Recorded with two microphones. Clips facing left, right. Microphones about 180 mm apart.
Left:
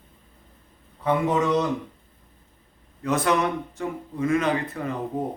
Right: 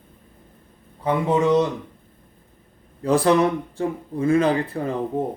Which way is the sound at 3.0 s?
30° right (ahead or behind).